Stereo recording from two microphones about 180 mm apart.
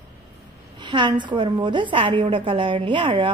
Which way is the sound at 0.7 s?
25° right (ahead or behind).